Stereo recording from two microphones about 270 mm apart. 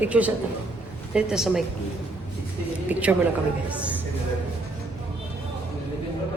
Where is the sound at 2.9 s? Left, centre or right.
Centre.